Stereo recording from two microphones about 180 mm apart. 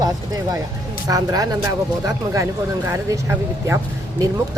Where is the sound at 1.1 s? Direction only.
20° right (ahead or behind).